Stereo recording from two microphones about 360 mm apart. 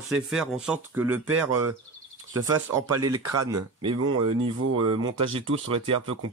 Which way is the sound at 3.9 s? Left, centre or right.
Right.